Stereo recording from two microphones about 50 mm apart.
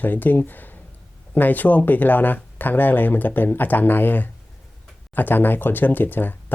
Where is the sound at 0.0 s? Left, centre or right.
Left.